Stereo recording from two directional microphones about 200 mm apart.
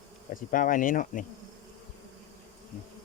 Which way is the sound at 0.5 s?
40° left (ahead or behind).